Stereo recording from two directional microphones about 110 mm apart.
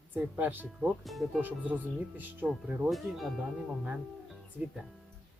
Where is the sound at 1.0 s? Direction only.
Centre (ahead or behind).